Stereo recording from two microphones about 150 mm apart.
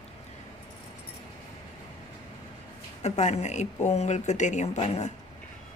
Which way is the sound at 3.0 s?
50° left (ahead or behind).